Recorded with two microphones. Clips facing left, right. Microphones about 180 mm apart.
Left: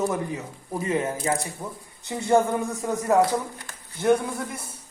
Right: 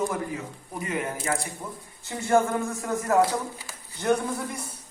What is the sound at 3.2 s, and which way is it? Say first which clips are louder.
Speech: left 1 dB; 5° right (ahead or behind).